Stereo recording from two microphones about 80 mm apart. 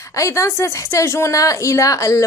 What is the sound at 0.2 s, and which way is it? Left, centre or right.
A woman's voice, left.